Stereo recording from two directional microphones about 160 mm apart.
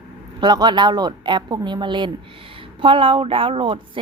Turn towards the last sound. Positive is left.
turn(degrees=-30)  # may be behind; listen again after turning